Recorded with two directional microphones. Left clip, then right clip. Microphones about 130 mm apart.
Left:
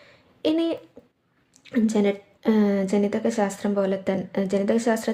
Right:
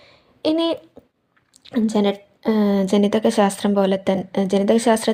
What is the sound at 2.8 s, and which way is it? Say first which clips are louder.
A woman's voice: right 6 dB; 40° right (ahead or behind).